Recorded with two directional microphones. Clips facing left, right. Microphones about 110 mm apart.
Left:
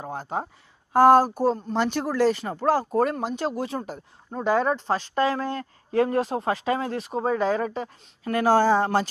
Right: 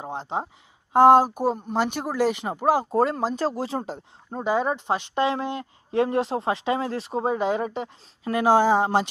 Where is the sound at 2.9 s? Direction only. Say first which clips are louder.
Right 1 dB; 30° right (ahead or behind).